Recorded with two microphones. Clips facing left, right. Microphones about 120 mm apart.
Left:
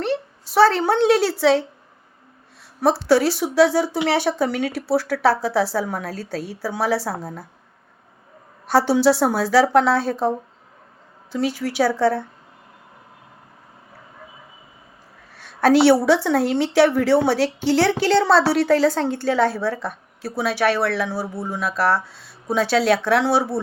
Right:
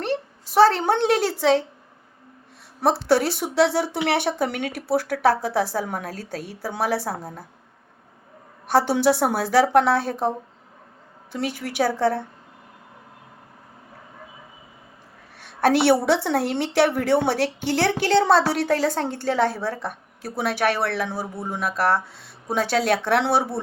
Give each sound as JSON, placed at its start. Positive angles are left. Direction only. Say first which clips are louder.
{"t": 0.0, "sound": "a woman's voice", "louder": "left 2 dB", "side_deg": -50}
{"t": 2.8, "sound": "speech", "louder": "left 3 dB", "side_deg": -55}
{"t": 8.6, "sound": "speech", "louder": "left 2 dB", "side_deg": -50}
{"t": 11.3, "sound": "speech", "louder": "left 5 dB", "side_deg": -55}
{"t": 15.7, "sound": "speech", "louder": "left 5 dB", "side_deg": -55}